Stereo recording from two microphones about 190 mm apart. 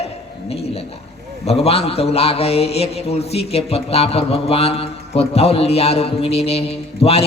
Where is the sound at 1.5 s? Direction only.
30° left (ahead or behind).